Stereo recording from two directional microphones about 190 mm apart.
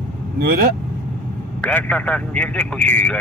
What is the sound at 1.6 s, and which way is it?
Speech, 5° left (ahead or behind).